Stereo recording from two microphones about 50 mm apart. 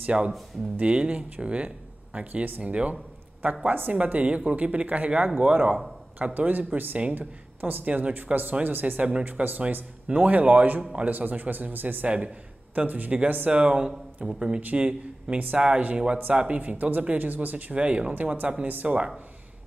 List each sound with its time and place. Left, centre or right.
0.0 s speech: right
3.6 s speech: right
3.9 s speech: right
7.8 s speech: right
10.8 s a man's voice: centre
11.1 s speech: right; by 14.6 s centre
14.6 s speech: right
15.3 s speech: right